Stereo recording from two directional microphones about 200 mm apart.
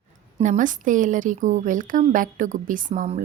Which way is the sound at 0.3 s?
40° right (ahead or behind).